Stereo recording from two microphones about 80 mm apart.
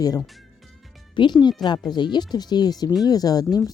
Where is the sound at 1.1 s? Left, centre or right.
Left.